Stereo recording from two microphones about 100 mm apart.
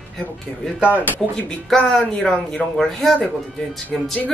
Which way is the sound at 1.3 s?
5° left (ahead or behind).